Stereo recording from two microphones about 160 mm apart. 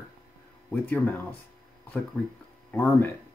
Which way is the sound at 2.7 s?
15° left (ahead or behind).